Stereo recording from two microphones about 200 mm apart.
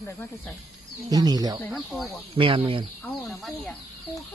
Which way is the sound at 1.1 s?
20° right (ahead or behind).